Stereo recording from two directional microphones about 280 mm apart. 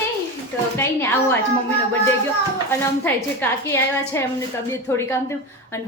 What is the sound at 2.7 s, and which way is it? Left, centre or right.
A woman's voice, centre.